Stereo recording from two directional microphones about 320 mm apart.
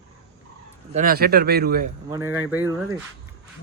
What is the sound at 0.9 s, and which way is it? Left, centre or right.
Speech, right.